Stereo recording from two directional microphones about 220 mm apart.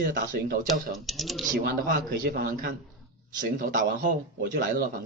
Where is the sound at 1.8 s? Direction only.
40° right (ahead or behind).